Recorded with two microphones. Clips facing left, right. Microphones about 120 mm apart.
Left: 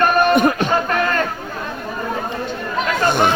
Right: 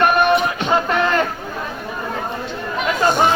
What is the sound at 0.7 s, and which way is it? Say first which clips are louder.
Speech: right 1 dB; 25° right (ahead or behind).